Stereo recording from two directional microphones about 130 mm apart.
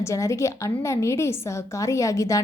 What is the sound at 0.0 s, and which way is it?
A woman's voice, 25° left (ahead or behind).